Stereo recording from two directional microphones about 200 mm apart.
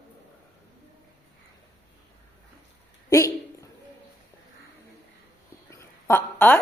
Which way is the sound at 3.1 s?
15° left (ahead or behind).